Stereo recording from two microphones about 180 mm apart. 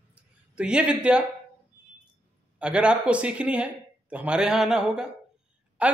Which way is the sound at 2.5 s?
5° right (ahead or behind).